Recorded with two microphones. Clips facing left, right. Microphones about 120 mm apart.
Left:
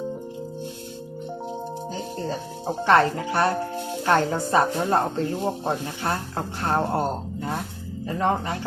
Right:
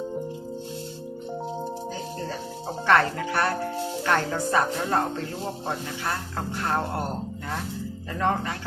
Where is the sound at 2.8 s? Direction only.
25° left (ahead or behind).